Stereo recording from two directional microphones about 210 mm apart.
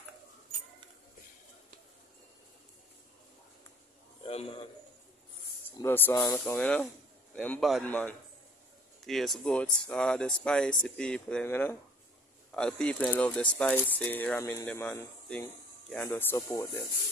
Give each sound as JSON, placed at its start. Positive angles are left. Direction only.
{"t": 4.3, "sound": "a man's voice", "side_deg": 30}
{"t": 5.7, "sound": "speech", "side_deg": 10}